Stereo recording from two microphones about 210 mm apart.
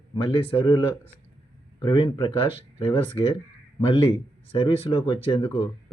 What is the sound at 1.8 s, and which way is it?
Speech, 20° left (ahead or behind).